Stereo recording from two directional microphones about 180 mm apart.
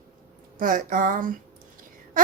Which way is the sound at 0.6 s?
50° right (ahead or behind).